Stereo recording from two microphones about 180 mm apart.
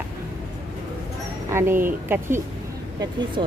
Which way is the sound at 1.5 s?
15° right (ahead or behind).